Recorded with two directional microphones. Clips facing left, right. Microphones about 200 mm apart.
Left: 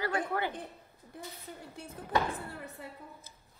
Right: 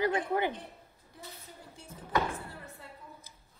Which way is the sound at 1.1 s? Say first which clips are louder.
Left 4 dB; 55° left (ahead or behind).